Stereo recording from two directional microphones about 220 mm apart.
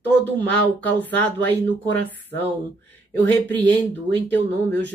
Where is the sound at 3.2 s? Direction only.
5° left (ahead or behind).